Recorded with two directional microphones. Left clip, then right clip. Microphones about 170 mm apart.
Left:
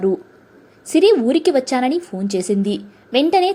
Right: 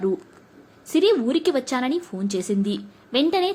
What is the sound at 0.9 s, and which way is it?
A woman's voice, 15° left (ahead or behind).